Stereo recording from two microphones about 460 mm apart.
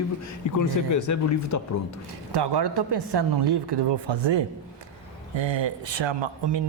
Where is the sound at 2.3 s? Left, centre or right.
Right.